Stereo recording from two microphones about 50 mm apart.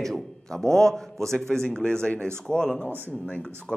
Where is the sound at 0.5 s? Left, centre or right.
Centre.